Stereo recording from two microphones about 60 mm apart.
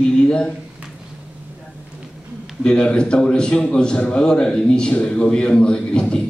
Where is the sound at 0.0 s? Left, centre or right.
Centre.